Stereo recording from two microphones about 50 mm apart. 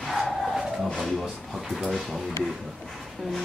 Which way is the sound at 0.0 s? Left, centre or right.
Centre.